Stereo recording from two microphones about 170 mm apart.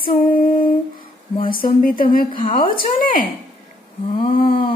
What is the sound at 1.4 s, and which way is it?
Speech, 55° left (ahead or behind).